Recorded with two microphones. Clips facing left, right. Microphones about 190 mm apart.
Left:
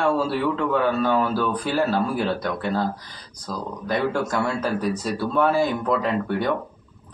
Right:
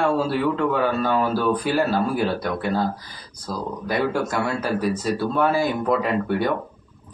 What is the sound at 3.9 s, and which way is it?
A man's voice, 5° right (ahead or behind).